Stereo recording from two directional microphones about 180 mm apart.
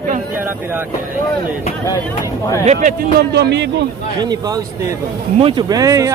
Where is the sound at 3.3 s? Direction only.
70° right (ahead or behind).